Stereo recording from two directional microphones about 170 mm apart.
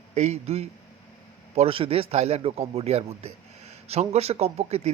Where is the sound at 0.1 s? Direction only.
40° right (ahead or behind).